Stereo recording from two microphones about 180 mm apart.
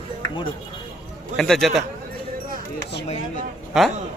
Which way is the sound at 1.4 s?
Centre (ahead or behind).